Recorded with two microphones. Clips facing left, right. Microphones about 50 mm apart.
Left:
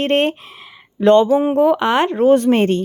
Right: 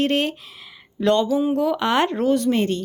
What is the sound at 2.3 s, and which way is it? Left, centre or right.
Speech, left.